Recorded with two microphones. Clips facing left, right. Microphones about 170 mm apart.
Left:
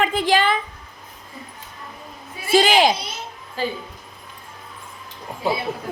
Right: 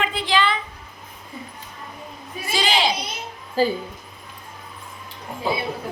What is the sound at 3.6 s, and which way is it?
Speech, 35° right (ahead or behind).